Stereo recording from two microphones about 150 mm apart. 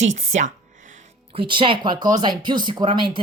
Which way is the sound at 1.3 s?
35° right (ahead or behind).